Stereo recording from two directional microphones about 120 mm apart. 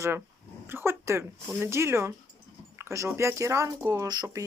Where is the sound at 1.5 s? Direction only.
20° right (ahead or behind).